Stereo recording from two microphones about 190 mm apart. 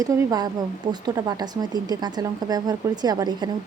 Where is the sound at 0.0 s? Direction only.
20° right (ahead or behind).